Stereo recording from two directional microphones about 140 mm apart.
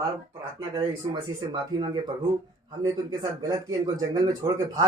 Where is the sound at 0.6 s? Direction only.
25° right (ahead or behind).